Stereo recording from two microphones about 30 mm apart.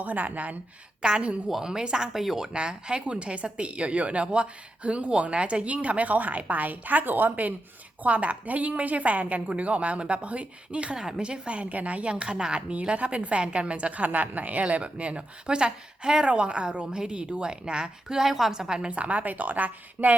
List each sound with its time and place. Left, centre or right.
0.0 s a woman's voice: right
1.0 s a woman's voice: right
1.6 s speech: right
2.1 s a woman's voice: centre
2.5 s speech: right
8.0 s a woman's voice: right
11.7 s a woman's voice: right
12.0 s a woman's voice: right
14.0 s a woman's voice: right
14.6 s a woman's voice: right
18.2 s a woman's voice: centre
18.5 s speech: right
18.9 s a woman's voice: right